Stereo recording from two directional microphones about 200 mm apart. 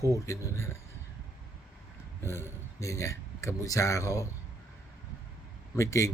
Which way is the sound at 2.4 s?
15° left (ahead or behind).